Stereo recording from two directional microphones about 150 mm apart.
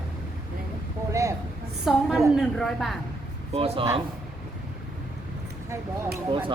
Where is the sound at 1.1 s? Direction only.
20° right (ahead or behind).